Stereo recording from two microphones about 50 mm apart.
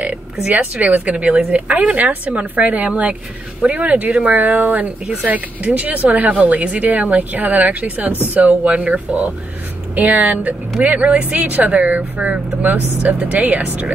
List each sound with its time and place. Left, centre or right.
0.5 s speech: right